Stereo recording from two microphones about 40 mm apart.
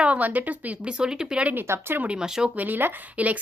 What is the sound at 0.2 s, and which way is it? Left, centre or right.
Speech, right.